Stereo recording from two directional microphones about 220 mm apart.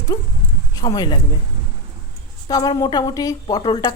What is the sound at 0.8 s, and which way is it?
Speech, 15° left (ahead or behind).